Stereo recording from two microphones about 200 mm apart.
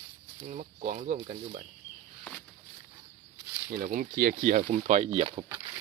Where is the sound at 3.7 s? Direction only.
40° right (ahead or behind).